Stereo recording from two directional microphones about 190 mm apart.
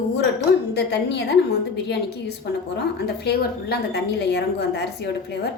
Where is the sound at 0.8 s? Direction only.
60° left (ahead or behind).